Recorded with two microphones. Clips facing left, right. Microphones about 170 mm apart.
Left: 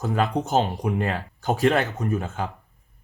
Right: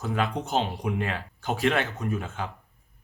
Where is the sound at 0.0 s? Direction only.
40° left (ahead or behind).